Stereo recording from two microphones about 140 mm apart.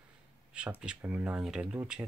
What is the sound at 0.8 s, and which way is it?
Speech, 10° right (ahead or behind).